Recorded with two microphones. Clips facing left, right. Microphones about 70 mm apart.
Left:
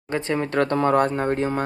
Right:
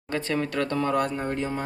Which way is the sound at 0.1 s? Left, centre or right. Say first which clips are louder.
Left 3 dB; left.